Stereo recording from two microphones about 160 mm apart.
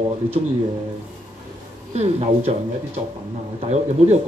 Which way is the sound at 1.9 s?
40° right (ahead or behind).